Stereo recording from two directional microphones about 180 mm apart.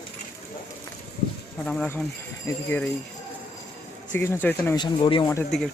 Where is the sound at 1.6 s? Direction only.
5° left (ahead or behind).